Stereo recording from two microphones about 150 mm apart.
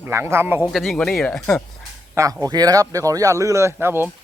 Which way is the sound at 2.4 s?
25° right (ahead or behind).